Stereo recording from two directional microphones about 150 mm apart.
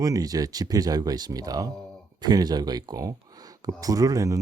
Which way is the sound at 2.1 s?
25° right (ahead or behind).